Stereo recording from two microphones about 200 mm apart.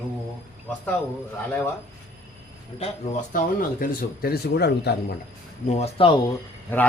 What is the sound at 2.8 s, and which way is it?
Speech, 40° left (ahead or behind).